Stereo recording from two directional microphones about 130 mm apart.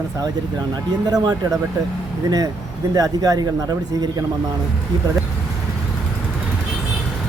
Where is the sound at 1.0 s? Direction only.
30° right (ahead or behind).